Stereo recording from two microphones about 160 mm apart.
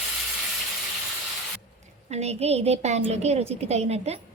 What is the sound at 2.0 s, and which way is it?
A woman's voice, 40° right (ahead or behind).